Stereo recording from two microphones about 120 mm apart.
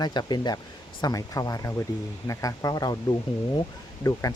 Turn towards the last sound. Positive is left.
turn(degrees=25)  # may be behind; listen again after turning